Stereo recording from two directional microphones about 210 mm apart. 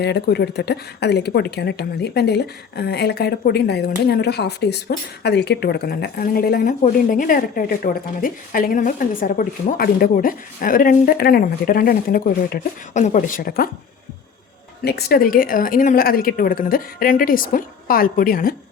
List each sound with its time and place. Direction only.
0.0 s a woman's voice: 50° left (ahead or behind)
14.8 s a woman's voice: 50° left (ahead or behind)